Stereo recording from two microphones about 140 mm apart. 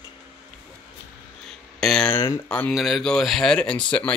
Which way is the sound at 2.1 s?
25° left (ahead or behind).